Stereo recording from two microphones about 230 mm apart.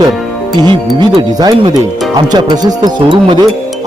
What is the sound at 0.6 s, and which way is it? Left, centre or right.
Speech, centre.